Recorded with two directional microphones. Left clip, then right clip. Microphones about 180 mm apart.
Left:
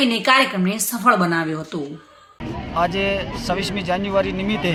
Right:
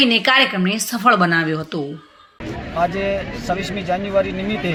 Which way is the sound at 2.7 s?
25° left (ahead or behind).